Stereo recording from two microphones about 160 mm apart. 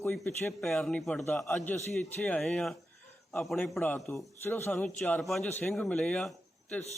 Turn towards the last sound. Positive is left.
turn(degrees=5)  # may be behind; listen again after turning